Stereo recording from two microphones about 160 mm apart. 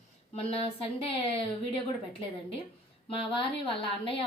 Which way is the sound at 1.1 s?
35° left (ahead or behind).